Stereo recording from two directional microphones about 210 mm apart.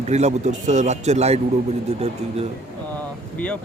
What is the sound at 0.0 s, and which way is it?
A man's voice, 30° right (ahead or behind).